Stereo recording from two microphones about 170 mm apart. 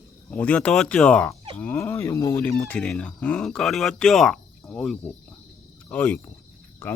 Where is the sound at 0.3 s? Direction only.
10° left (ahead or behind).